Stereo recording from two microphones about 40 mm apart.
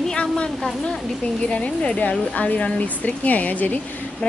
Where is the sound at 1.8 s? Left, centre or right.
Left.